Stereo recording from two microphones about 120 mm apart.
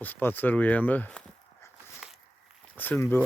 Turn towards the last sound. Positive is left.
turn(degrees=15)  # may be behind; listen again after turning